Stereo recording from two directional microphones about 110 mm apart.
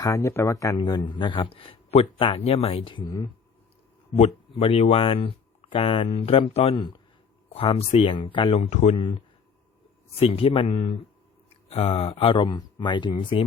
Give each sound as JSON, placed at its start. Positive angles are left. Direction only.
{"t": 0.0, "sound": "speech", "side_deg": 30}
{"t": 4.2, "sound": "speech", "side_deg": 65}
{"t": 6.7, "sound": "speech", "side_deg": 40}
{"t": 7.5, "sound": "speech", "side_deg": 60}
{"t": 8.5, "sound": "speech", "side_deg": 80}
{"t": 9.0, "sound": "speech", "side_deg": 55}